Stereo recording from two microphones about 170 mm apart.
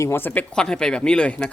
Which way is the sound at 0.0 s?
15° left (ahead or behind).